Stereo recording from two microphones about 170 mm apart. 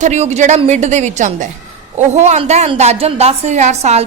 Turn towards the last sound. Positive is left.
turn(degrees=-40)  # may be behind; listen again after turning